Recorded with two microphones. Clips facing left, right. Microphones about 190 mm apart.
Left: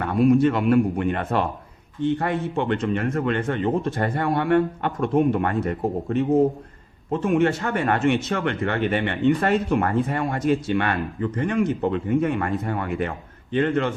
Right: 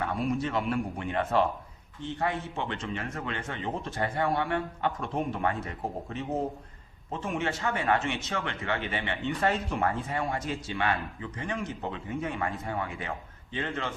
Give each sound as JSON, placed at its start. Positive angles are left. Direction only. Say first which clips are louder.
{"t": 0.0, "sound": "speech", "louder": "left 12 dB", "side_deg": 65}